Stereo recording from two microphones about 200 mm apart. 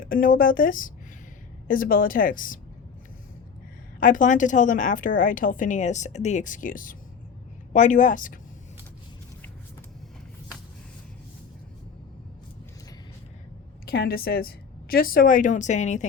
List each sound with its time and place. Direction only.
0.0 s speech: 45° left (ahead or behind)
4.0 s a woman's voice: 40° left (ahead or behind)
13.8 s speech: 50° left (ahead or behind)